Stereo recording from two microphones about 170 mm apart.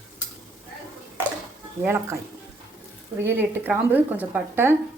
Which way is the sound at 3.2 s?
10° right (ahead or behind).